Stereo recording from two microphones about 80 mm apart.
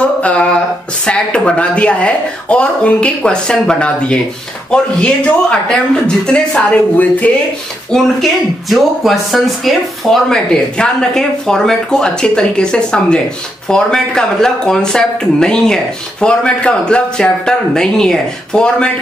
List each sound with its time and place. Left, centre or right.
0.0 s a sound: centre
1.0 s speech: centre
4.6 s speech: centre
7.9 s speech: centre